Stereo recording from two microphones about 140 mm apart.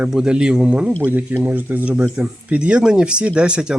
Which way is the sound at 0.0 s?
5° right (ahead or behind).